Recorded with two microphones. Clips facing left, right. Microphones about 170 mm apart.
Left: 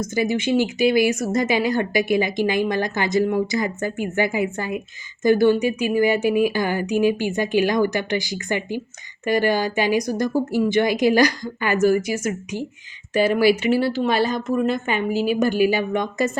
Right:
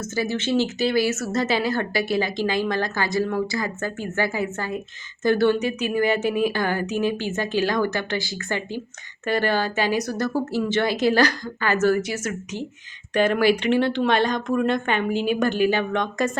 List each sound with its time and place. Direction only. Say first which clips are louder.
0.0 s speech: left 4 dB; 15° left (ahead or behind)